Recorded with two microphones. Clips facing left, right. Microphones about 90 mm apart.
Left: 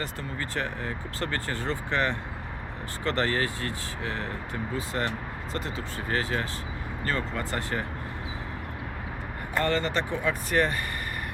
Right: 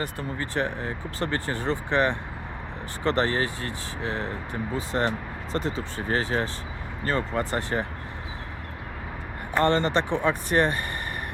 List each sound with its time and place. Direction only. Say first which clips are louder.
0.0 s speech: right 3 dB; 20° right (ahead or behind)
9.6 s speech: right 5 dB; 25° right (ahead or behind)